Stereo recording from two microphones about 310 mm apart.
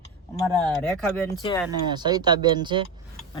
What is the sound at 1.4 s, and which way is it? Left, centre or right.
Speech, centre.